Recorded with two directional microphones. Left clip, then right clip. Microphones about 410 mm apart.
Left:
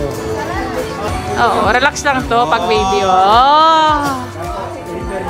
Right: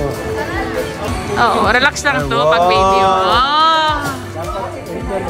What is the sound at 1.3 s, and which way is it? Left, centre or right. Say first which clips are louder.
Speech: even; centre.